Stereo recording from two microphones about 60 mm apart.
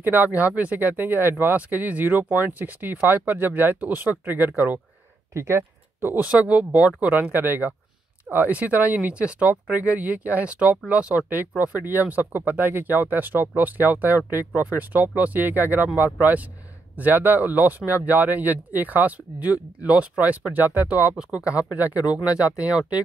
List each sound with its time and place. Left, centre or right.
0.0 s speech: right
5.3 s speech: right
5.6 s a sound: right
6.1 s speech: right
21.2 s speech: centre